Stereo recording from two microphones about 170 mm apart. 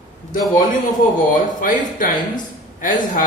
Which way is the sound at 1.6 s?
55° left (ahead or behind).